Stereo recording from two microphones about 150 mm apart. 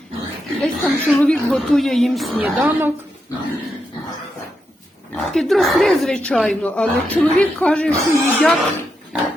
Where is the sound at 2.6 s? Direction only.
20° right (ahead or behind).